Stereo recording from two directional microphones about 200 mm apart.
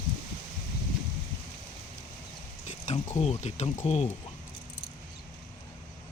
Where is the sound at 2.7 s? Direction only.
35° left (ahead or behind).